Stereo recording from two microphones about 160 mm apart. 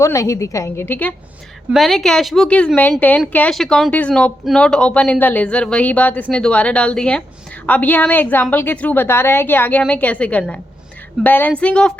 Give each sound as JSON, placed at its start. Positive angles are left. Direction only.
{"t": 0.0, "sound": "a woman's voice", "side_deg": 20}
{"t": 1.7, "sound": "a woman's voice", "side_deg": 0}